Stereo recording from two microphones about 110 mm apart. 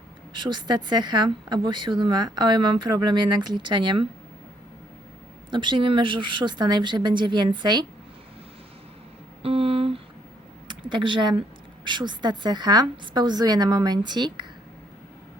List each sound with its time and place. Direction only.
0.4 s a woman's voice: 45° right (ahead or behind)
5.5 s a woman's voice: 45° right (ahead or behind)
9.4 s a sound: 60° right (ahead or behind)
10.7 s a woman's voice: 45° right (ahead or behind)